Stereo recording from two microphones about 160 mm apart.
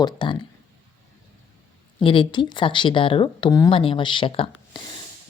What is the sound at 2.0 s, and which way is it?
Speech, 30° left (ahead or behind).